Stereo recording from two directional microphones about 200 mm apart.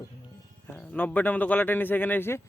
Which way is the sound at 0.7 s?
5° left (ahead or behind).